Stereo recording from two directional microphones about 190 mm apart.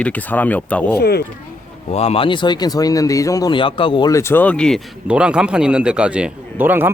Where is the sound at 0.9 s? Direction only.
60° left (ahead or behind).